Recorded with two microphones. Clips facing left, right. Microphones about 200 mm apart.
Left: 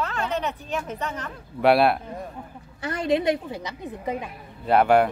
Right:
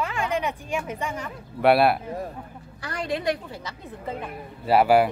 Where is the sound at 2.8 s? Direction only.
25° left (ahead or behind).